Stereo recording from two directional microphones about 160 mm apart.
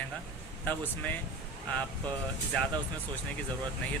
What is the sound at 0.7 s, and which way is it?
Speech, 10° left (ahead or behind).